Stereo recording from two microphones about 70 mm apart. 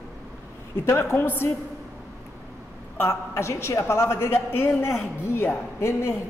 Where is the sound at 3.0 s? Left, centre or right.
Left.